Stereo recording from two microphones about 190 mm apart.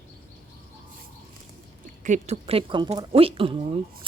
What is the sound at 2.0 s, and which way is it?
Speech, 35° right (ahead or behind).